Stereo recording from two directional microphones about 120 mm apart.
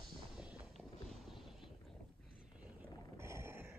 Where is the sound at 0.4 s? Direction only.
5° right (ahead or behind).